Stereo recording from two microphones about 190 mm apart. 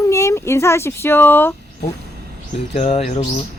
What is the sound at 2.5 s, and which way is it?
Speech, 35° left (ahead or behind).